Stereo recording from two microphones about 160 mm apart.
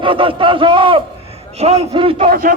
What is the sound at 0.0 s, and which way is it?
Speech, 30° right (ahead or behind).